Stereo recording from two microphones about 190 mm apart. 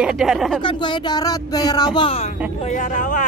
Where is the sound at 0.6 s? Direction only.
25° left (ahead or behind).